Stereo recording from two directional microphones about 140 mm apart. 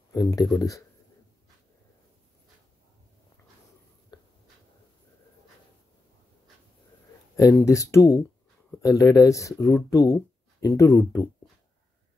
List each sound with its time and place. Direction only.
0.1 s speech: 25° left (ahead or behind)
4.1 s a sound: 30° left (ahead or behind)
7.5 s speech: 20° left (ahead or behind)